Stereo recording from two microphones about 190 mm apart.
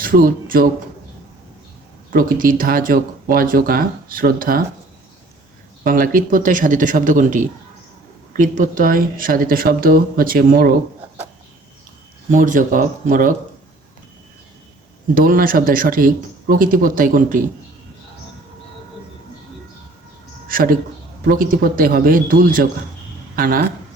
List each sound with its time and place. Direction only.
0.0 s speech: 50° right (ahead or behind)
2.0 s speech: 45° right (ahead or behind)
5.8 s speech: 45° right (ahead or behind)
12.3 s speech: 45° right (ahead or behind)
15.1 s speech: 50° right (ahead or behind)
20.5 s speech: 50° right (ahead or behind)